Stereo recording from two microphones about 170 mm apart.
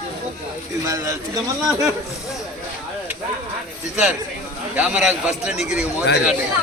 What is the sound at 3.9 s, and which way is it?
A man's voice, 5° right (ahead or behind).